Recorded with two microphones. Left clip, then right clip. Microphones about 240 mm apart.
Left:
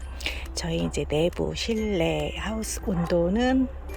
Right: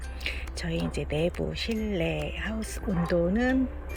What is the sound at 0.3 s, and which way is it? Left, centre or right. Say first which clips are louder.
Music: left 3 dB; centre.